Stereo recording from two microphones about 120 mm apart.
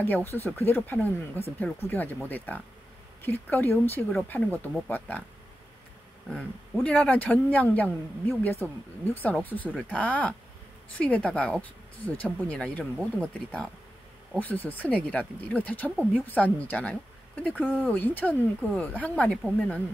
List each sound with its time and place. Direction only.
0.0 s speech: 15° left (ahead or behind)
6.2 s speech: 5° left (ahead or behind)